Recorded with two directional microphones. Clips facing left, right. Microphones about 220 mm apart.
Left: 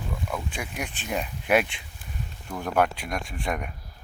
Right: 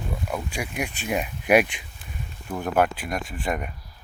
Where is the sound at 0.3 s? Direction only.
10° right (ahead or behind).